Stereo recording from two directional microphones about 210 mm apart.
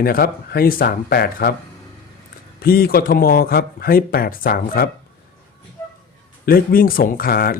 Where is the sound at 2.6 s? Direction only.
45° left (ahead or behind).